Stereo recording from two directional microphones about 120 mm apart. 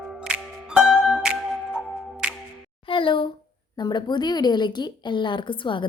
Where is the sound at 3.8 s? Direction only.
40° left (ahead or behind).